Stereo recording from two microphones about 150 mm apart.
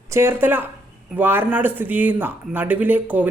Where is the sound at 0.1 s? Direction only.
15° right (ahead or behind).